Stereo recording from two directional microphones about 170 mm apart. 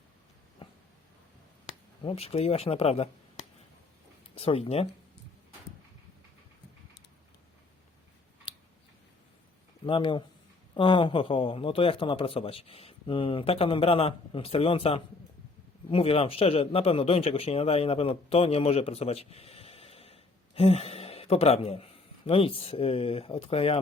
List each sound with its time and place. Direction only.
2.0 s a man's voice: 35° left (ahead or behind)
4.4 s a man's voice: 35° left (ahead or behind)
8.5 s scissors: 30° left (ahead or behind)
9.8 s a man's voice: 30° left (ahead or behind)